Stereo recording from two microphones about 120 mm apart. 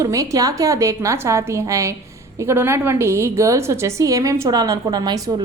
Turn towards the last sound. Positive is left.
turn(degrees=-35)  # may be behind; listen again after turning